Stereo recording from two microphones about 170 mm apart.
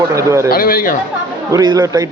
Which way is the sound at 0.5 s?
55° left (ahead or behind).